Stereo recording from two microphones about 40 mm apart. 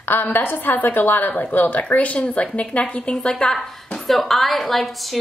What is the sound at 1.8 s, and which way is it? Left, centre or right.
A woman's voice, left.